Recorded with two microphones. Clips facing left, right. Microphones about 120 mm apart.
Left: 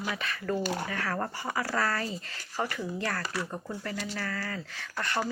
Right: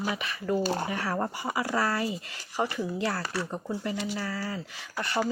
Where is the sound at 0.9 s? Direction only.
15° right (ahead or behind).